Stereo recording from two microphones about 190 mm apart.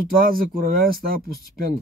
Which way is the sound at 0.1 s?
50° right (ahead or behind).